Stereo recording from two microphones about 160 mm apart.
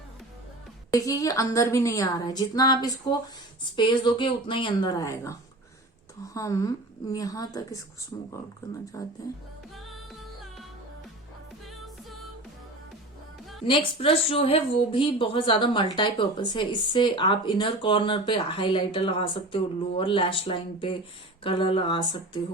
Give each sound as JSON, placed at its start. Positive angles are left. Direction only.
{"t": 0.9, "sound": "a woman's voice", "side_deg": 20}
{"t": 13.7, "sound": "speech", "side_deg": 35}